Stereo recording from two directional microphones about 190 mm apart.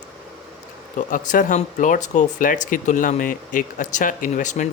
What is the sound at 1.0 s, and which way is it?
Speech, 45° left (ahead or behind).